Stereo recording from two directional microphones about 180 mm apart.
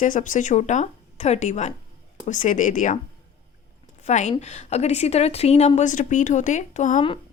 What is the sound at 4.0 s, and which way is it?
A woman's voice, 40° left (ahead or behind).